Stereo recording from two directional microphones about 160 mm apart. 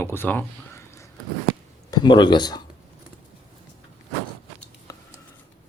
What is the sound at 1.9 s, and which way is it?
Speech, 30° left (ahead or behind).